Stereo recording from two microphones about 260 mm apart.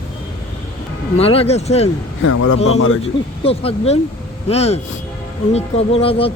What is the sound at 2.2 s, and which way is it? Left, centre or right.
Speech, left.